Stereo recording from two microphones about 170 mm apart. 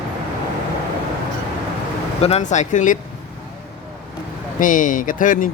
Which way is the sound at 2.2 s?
40° left (ahead or behind).